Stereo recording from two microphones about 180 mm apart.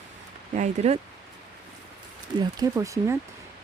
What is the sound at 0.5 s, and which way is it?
Speech, 40° right (ahead or behind).